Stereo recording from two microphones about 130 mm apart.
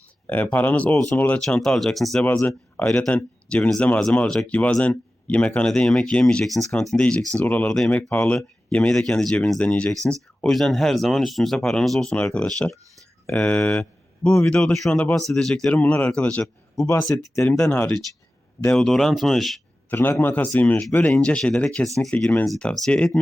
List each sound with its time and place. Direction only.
0.3 s speech: 10° left (ahead or behind)
2.1 s speech: 15° left (ahead or behind)
16.7 s speech: 25° left (ahead or behind)
17.0 s speech: 10° left (ahead or behind)
19.9 s speech: 15° left (ahead or behind)